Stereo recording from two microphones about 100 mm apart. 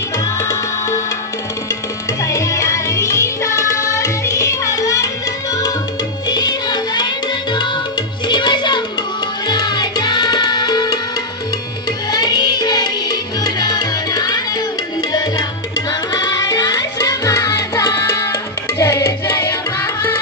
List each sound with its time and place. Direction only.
0.4 s music: 30° left (ahead or behind)
2.2 s music: 30° left (ahead or behind)
8.3 s music: 50° left (ahead or behind)
12.1 s music: 45° left (ahead or behind)
15.0 s tabla: 40° left (ahead or behind)
15.9 s music: 40° left (ahead or behind)
18.8 s tabla: 30° left (ahead or behind)